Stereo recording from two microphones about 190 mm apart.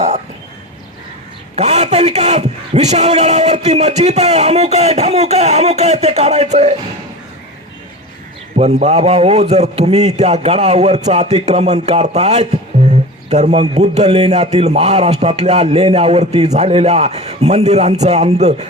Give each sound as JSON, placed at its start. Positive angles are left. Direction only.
{"t": 1.5, "sound": "a man's voice", "side_deg": -35}
{"t": 8.5, "sound": "a man's voice", "side_deg": -35}